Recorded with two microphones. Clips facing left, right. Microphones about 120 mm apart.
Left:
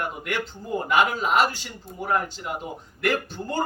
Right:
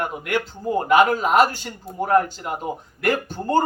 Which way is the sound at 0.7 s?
50° right (ahead or behind).